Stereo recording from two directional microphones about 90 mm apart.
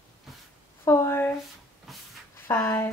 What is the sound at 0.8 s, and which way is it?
Speech, 30° left (ahead or behind).